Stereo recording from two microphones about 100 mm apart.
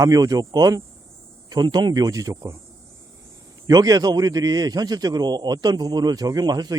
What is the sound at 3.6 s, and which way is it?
A man's voice, 40° right (ahead or behind).